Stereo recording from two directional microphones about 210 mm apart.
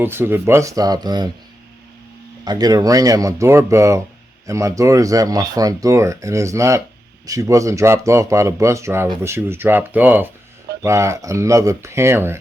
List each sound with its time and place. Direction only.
0.0 s speech: 10° right (ahead or behind)
2.4 s speech: 20° right (ahead or behind)